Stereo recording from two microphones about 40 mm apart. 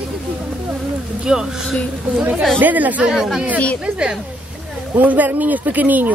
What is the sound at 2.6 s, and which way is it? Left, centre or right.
Speech, right.